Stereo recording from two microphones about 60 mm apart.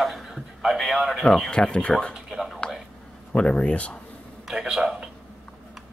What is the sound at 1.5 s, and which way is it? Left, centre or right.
Speech, centre.